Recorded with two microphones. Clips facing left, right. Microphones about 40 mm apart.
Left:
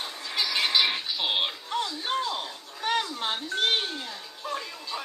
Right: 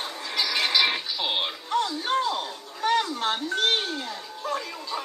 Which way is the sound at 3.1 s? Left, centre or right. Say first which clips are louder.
Right 4 dB; centre.